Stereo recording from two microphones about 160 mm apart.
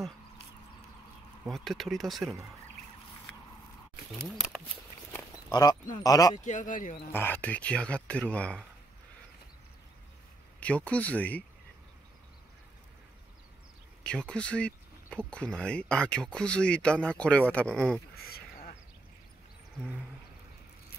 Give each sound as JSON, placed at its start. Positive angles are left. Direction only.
{"t": 1.5, "sound": "speech", "side_deg": 0}
{"t": 5.5, "sound": "speech", "side_deg": 25}
{"t": 6.3, "sound": "speech", "side_deg": 50}
{"t": 7.1, "sound": "speech", "side_deg": 10}
{"t": 10.6, "sound": "speech", "side_deg": 10}
{"t": 14.0, "sound": "speech", "side_deg": 5}
{"t": 18.1, "sound": "a sound", "side_deg": 75}